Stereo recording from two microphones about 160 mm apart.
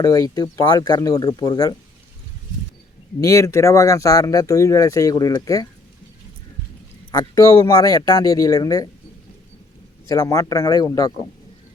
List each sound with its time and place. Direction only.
0.0 s speech: 20° left (ahead or behind)
3.2 s speech: 20° left (ahead or behind)
7.1 s speech: 20° left (ahead or behind)
10.1 s speech: 20° left (ahead or behind)